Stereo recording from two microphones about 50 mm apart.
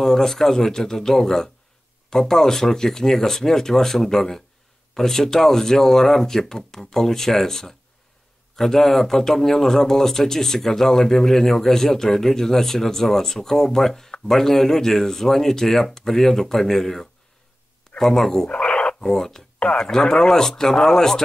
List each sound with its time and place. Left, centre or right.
0.0 s speech: centre
18.5 s dog: left
19.0 s speech: centre